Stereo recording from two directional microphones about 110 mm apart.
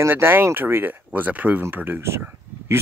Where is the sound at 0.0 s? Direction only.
20° right (ahead or behind).